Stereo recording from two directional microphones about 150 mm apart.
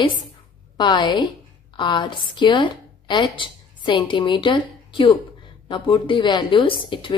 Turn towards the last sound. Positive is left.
turn(degrees=35)  # may be behind; listen again after turning